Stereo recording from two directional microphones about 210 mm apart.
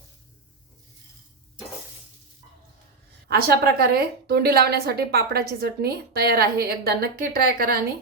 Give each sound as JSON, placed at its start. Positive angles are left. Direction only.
{"t": 3.2, "sound": "a woman's voice", "side_deg": -45}